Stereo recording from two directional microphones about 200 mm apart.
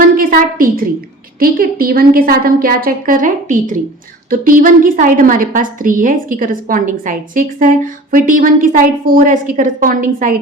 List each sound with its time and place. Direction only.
0.2 s a woman's voice: 45° right (ahead or behind)